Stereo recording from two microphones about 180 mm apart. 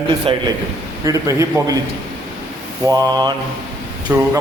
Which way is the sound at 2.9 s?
20° right (ahead or behind).